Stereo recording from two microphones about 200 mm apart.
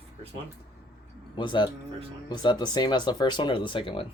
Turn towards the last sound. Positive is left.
turn(degrees=25)  # may be behind; listen again after turning